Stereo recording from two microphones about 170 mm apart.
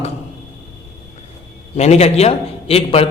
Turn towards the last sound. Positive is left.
turn(degrees=35)  # may be behind; listen again after turning